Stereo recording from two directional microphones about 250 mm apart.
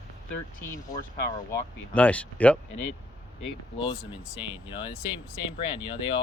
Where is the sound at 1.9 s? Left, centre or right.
Centre.